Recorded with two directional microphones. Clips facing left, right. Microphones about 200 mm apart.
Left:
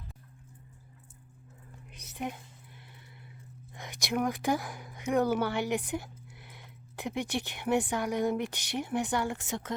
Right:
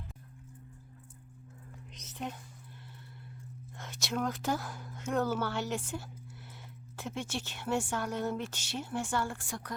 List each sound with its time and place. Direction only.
1.9 s whispering: 10° left (ahead or behind)
3.8 s speech: 15° left (ahead or behind)